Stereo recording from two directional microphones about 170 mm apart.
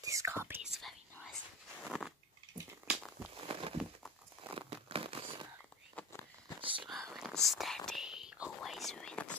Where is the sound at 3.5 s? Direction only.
35° right (ahead or behind).